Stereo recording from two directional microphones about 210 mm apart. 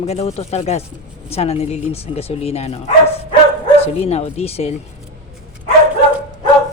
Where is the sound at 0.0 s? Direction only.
30° left (ahead or behind).